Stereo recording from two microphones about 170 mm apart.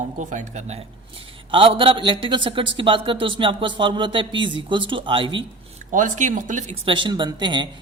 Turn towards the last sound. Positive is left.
turn(degrees=-25)  # may be behind; listen again after turning